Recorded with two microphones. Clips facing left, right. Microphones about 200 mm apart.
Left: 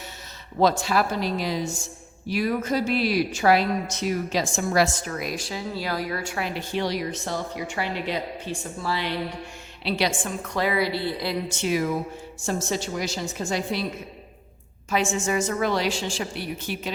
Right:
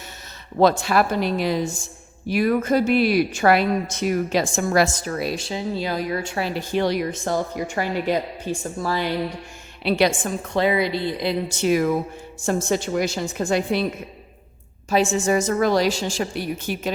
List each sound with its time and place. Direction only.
0.6 s a woman's voice: 60° right (ahead or behind)
4.9 s speech: 35° right (ahead or behind)
9.8 s a woman's voice: 55° right (ahead or behind)
10.5 s a woman's voice: 25° right (ahead or behind)
11.4 s a woman's voice: 40° right (ahead or behind); by 13.8 s 55° right (ahead or behind)
14.8 s a woman's voice: 35° right (ahead or behind)